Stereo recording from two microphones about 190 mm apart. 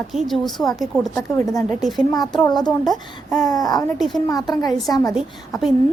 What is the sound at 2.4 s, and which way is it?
Speech, 20° left (ahead or behind).